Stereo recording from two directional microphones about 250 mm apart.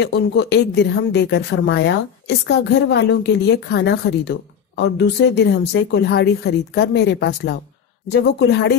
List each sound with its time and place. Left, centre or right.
0.0 s speech: left